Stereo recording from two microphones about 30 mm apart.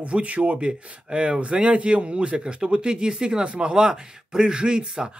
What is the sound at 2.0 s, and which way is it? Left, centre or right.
Speech, right.